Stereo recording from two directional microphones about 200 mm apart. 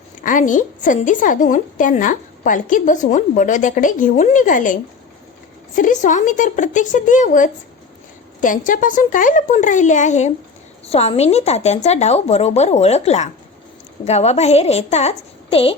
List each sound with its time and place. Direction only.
0.2 s a woman's voice: 40° left (ahead or behind)